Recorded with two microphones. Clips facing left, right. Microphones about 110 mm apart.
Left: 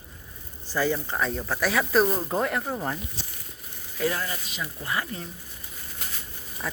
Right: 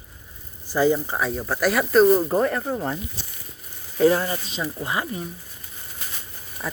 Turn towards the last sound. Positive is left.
turn(degrees=0)  # may be behind; listen again after turning